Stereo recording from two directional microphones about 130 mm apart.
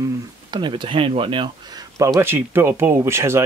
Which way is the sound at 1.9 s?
25° right (ahead or behind).